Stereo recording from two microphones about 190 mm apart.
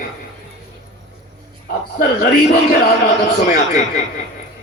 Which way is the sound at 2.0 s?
45° left (ahead or behind).